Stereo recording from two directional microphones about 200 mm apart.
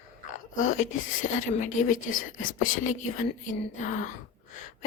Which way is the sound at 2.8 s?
40° left (ahead or behind).